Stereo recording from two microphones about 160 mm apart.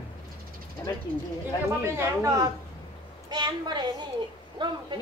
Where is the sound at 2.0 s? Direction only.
20° right (ahead or behind).